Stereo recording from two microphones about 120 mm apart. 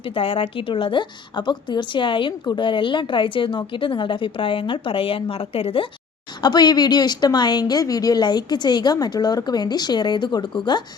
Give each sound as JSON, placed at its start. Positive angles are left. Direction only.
{"t": 0.1, "sound": "a woman's voice", "side_deg": 50}
{"t": 6.4, "sound": "a woman's voice", "side_deg": 35}